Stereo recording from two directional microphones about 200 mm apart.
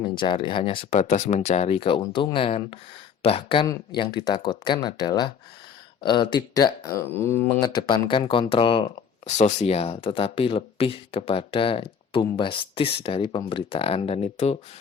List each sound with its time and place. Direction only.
0.0 s speech: 25° left (ahead or behind)